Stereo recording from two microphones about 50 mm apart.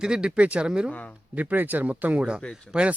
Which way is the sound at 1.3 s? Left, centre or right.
Right.